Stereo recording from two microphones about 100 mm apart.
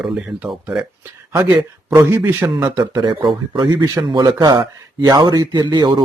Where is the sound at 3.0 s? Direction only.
45° right (ahead or behind).